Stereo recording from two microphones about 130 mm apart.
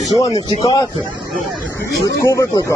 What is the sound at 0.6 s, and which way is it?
Speech, 30° left (ahead or behind).